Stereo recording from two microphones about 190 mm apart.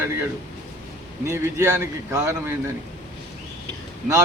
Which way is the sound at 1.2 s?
15° right (ahead or behind).